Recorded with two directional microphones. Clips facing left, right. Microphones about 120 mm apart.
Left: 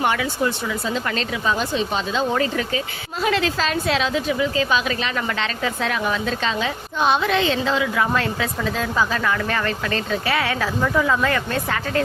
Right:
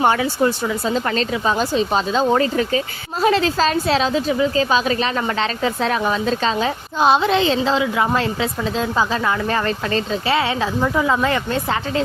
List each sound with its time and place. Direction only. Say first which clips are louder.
0.0 s speech: right 4 dB; 30° right (ahead or behind)